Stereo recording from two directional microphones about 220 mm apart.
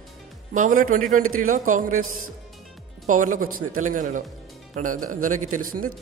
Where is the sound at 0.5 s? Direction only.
35° right (ahead or behind).